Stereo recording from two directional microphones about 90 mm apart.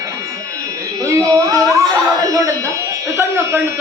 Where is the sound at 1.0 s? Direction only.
35° right (ahead or behind).